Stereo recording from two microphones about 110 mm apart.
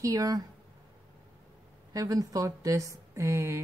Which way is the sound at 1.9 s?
35° right (ahead or behind).